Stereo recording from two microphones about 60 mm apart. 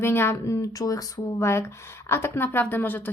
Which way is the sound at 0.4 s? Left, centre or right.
Left.